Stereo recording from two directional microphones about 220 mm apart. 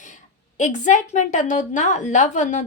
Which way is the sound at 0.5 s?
35° left (ahead or behind).